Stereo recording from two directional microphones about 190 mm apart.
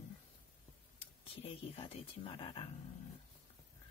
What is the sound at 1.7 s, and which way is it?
Speech, 30° left (ahead or behind).